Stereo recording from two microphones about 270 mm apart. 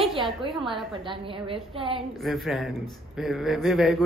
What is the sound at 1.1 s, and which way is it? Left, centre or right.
Speech, centre.